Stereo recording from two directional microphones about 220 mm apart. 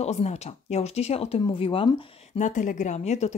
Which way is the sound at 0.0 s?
30° left (ahead or behind).